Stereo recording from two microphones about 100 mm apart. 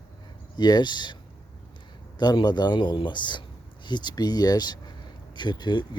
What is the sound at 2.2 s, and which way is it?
Speech, 45° left (ahead or behind).